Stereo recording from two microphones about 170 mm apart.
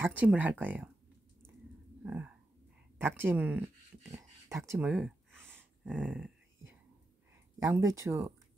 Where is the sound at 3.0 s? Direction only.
10° right (ahead or behind).